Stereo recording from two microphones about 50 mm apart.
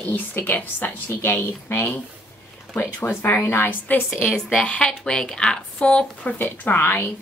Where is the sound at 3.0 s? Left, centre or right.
Left.